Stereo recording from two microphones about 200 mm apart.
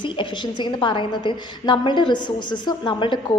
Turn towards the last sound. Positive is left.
turn(degrees=25)  # may be behind; listen again after turning